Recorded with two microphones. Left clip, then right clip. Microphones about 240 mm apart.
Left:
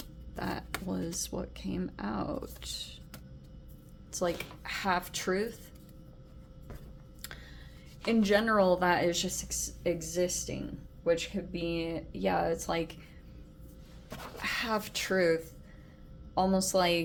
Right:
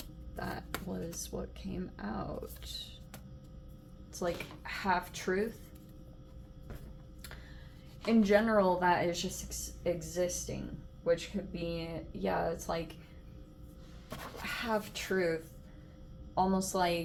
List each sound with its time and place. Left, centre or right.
0.3 s music: left
1.2 s speech: left
4.1 s speech: left
8.0 s speech: left
14.4 s speech: left